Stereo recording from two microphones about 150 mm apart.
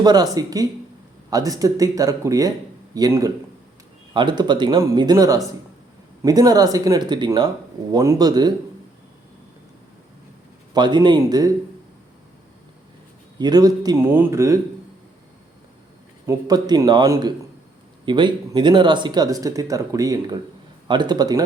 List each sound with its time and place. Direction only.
0.0 s speech: 25° right (ahead or behind)
10.8 s speech: 30° right (ahead or behind)
13.4 s speech: 25° right (ahead or behind)
16.2 s speech: 25° right (ahead or behind)